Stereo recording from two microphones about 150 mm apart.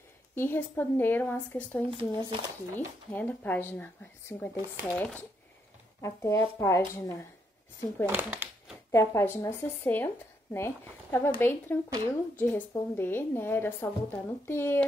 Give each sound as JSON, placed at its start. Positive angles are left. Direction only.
{"t": 0.3, "sound": "speech", "side_deg": 15}
{"t": 1.9, "sound": "speech", "side_deg": -35}
{"t": 3.1, "sound": "speech", "side_deg": 10}
{"t": 5.9, "sound": "speech", "side_deg": 20}
{"t": 8.1, "sound": "a sound", "side_deg": -10}
{"t": 8.9, "sound": "speech", "side_deg": 15}